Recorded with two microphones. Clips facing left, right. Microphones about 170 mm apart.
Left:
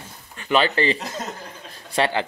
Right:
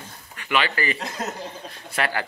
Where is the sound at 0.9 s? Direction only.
Centre (ahead or behind).